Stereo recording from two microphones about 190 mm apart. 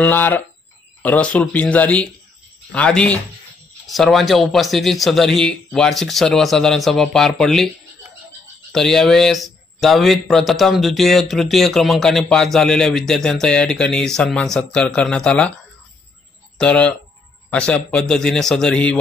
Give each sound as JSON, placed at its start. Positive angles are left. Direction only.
{"t": 0.0, "sound": "speech", "side_deg": 10}
{"t": 8.7, "sound": "speech", "side_deg": 0}
{"t": 16.5, "sound": "speech", "side_deg": 5}